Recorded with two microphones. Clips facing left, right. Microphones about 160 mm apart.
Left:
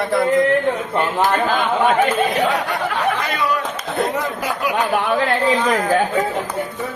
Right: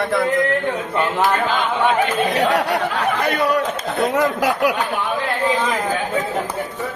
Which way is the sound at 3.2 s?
60° right (ahead or behind).